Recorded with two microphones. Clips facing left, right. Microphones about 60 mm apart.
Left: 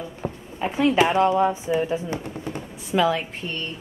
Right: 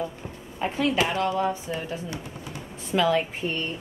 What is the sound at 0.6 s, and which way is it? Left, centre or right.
Speech, centre.